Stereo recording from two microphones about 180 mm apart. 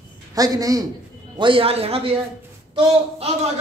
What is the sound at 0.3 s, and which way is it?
Speech, 20° right (ahead or behind).